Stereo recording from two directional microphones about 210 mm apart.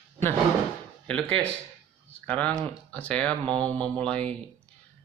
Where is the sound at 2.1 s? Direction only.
5° left (ahead or behind).